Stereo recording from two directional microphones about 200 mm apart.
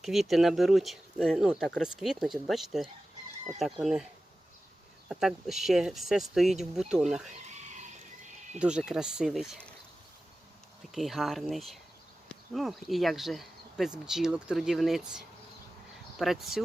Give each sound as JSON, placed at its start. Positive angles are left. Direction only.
{"t": 0.0, "sound": "speech", "side_deg": 0}
{"t": 7.3, "sound": "a sound", "side_deg": -35}
{"t": 8.5, "sound": "speech", "side_deg": -5}
{"t": 10.9, "sound": "speech", "side_deg": 0}